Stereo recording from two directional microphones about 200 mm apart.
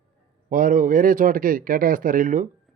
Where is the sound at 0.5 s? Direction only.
45° right (ahead or behind).